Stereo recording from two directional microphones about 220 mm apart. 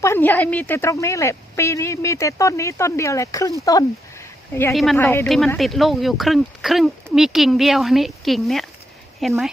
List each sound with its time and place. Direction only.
0.0 s a woman's voice: 10° left (ahead or behind)
4.7 s speech: centre (ahead or behind)